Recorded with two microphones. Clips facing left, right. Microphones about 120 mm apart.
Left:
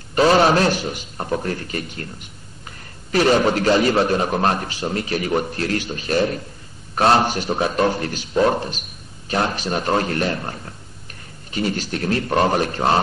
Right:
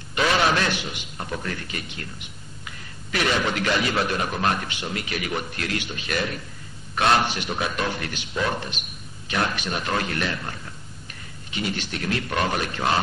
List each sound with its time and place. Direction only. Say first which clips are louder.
0.1 s a man's voice: left 7 dB; 40° left (ahead or behind)